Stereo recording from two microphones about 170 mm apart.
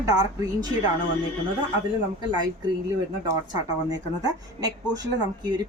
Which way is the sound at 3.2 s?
25° right (ahead or behind).